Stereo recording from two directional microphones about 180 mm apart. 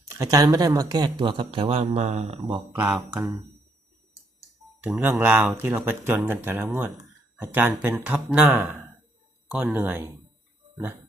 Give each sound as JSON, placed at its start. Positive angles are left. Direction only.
{"t": 0.1, "sound": "speech", "side_deg": -20}
{"t": 2.7, "sound": "speech", "side_deg": -10}
{"t": 4.8, "sound": "speech", "side_deg": -10}